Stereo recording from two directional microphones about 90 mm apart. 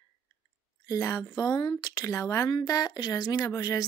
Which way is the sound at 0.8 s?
40° left (ahead or behind).